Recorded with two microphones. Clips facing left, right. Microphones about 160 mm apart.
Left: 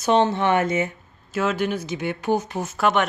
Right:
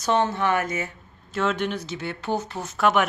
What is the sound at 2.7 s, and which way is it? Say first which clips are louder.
Speech: even; centre (ahead or behind).